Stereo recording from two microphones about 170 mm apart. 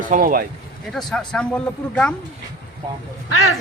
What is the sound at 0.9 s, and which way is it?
Speech, 5° left (ahead or behind).